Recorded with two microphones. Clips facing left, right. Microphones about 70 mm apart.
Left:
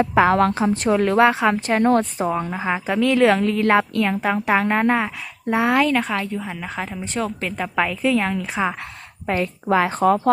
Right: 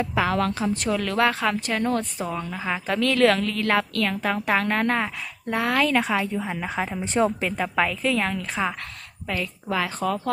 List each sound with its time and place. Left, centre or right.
0.0 s a woman's voice: left
2.2 s a woman's voice: left
2.8 s a woman's voice: centre
5.8 s a woman's voice: centre
7.0 s a woman's voice: right
7.4 s a woman's voice: centre
9.2 s a woman's voice: left